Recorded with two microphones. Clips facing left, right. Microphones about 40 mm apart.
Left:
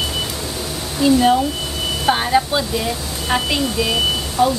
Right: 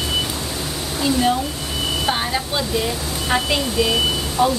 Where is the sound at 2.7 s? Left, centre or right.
Centre.